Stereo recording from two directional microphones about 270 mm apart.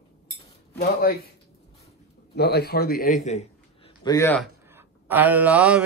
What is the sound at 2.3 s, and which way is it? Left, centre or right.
Speech, left.